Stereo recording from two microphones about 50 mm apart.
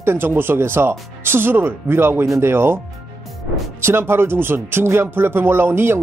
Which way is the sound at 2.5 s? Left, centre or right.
Right.